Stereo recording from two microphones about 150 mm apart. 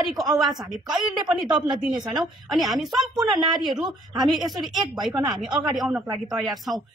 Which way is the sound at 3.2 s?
30° right (ahead or behind).